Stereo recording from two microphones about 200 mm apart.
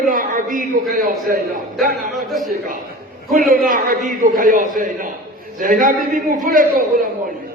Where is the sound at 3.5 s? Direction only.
45° right (ahead or behind).